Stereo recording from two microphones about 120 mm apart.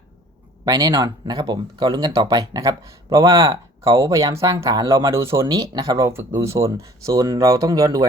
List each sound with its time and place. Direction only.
0.6 s speech: 35° right (ahead or behind)